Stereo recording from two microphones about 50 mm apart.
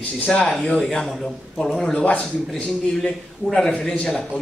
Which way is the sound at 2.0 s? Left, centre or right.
Left.